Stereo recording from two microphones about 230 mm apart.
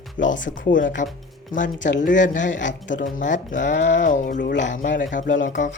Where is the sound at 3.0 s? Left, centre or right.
Left.